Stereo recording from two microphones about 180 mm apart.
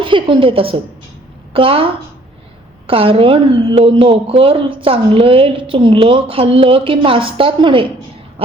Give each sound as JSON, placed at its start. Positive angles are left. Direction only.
{"t": 0.0, "sound": "a woman's voice", "side_deg": -30}